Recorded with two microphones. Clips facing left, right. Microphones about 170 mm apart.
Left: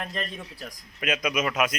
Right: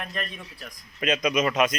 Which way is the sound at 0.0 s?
30° left (ahead or behind).